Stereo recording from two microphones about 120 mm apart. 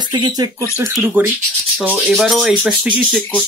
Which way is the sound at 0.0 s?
40° right (ahead or behind).